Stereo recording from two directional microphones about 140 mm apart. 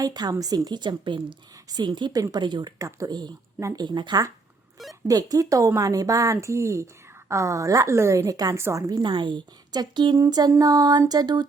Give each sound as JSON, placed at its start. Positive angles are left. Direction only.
{"t": 0.0, "sound": "a woman's voice", "side_deg": -30}